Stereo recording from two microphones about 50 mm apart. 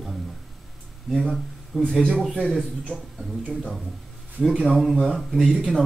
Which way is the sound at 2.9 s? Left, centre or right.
Right.